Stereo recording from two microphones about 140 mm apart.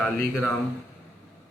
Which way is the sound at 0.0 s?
5° left (ahead or behind).